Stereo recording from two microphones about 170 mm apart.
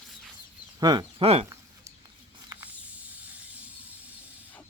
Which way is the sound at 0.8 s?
25° right (ahead or behind).